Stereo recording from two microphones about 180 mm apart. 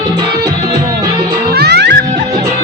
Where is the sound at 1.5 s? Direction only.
65° right (ahead or behind).